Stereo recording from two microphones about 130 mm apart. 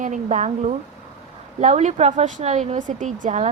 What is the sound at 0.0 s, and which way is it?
A woman's voice, 75° right (ahead or behind).